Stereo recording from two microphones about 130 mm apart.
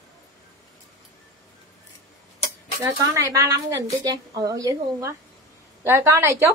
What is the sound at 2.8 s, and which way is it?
A woman's voice, 25° right (ahead or behind).